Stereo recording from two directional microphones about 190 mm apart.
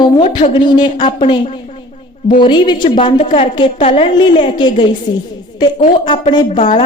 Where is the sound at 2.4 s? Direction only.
25° left (ahead or behind).